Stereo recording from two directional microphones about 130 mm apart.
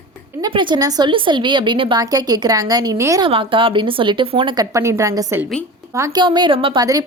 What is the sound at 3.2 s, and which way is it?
A woman's voice, 40° right (ahead or behind).